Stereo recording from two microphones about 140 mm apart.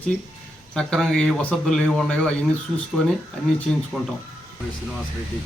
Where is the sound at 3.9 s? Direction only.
5° right (ahead or behind).